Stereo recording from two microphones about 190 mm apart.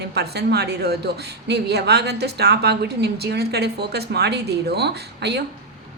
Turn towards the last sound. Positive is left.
turn(degrees=-60)  # may be behind; listen again after turning